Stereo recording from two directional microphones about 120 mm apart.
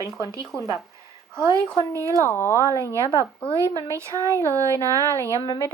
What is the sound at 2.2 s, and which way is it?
Child singing, 20° left (ahead or behind).